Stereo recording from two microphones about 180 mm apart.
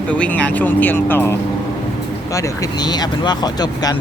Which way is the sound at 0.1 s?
5° left (ahead or behind).